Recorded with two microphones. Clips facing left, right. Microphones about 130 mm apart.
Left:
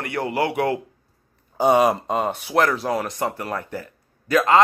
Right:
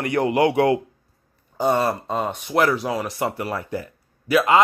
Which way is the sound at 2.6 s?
5° right (ahead or behind).